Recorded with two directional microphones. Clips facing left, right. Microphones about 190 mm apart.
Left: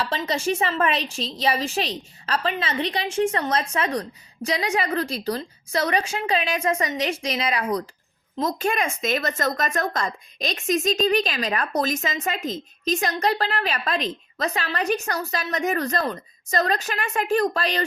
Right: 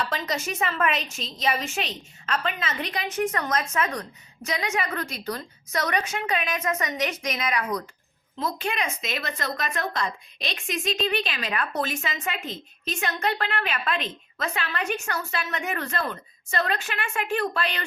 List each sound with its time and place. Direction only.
0.1 s speech: 30° left (ahead or behind)
8.4 s speech: 45° left (ahead or behind)